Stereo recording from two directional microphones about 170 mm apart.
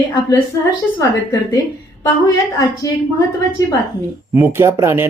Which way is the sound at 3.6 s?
20° left (ahead or behind).